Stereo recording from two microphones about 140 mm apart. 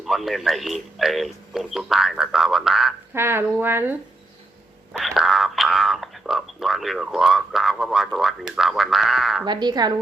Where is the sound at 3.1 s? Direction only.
15° right (ahead or behind).